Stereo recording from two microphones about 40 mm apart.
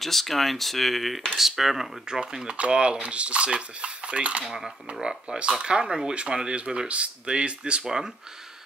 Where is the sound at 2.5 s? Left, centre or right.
Right.